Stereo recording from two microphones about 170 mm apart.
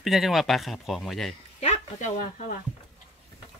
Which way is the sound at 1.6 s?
40° left (ahead or behind).